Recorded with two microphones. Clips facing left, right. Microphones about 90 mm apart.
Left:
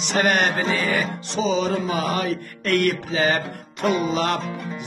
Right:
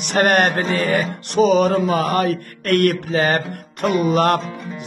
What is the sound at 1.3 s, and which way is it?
A man's voice, 60° right (ahead or behind).